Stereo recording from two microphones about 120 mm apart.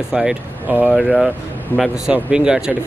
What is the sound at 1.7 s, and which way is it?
Speech, 15° left (ahead or behind).